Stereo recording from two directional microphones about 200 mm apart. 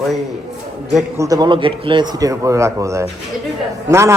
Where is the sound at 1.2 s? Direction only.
20° right (ahead or behind).